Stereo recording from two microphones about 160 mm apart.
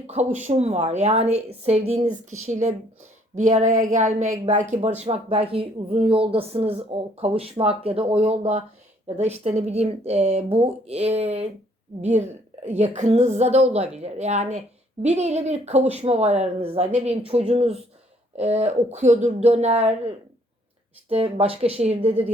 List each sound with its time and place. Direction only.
0.1 s speech: 45° right (ahead or behind)
2.5 s speech: 50° right (ahead or behind)
21.1 s speech: 40° right (ahead or behind)